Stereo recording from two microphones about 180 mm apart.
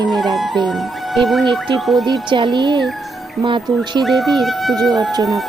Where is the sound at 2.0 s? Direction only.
25° right (ahead or behind).